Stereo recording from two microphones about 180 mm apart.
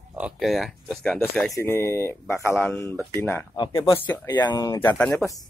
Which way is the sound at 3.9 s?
10° left (ahead or behind).